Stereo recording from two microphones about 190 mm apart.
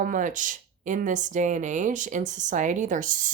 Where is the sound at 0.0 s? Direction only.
45° right (ahead or behind).